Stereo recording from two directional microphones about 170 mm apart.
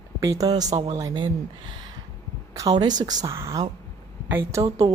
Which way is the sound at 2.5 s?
25° right (ahead or behind).